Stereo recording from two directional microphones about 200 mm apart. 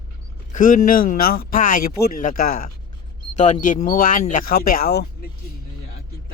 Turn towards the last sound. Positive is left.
turn(degrees=50)  # may be behind; listen again after turning